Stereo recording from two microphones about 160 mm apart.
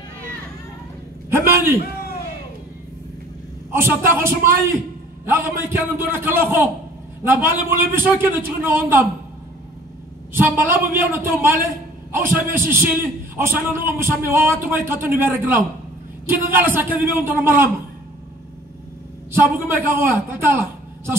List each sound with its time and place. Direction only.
1.3 s a sound: 15° right (ahead or behind)
3.7 s a man's voice: 15° right (ahead or behind)
10.3 s a man's voice: 15° right (ahead or behind)
19.4 s a man's voice: 15° right (ahead or behind)